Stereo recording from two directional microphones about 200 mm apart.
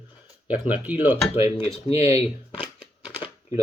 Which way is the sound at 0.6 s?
10° right (ahead or behind).